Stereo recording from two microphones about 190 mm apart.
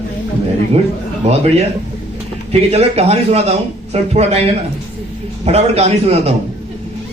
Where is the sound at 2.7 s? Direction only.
35° right (ahead or behind).